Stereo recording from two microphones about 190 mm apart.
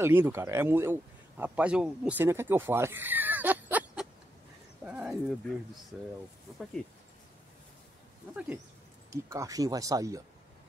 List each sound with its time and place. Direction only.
0.0 s speech: 10° right (ahead or behind)
9.1 s speech: 15° right (ahead or behind)